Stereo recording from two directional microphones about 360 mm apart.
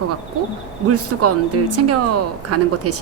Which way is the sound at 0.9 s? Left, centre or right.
Right.